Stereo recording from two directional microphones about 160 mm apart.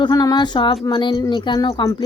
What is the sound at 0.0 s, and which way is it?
Speech, 25° left (ahead or behind).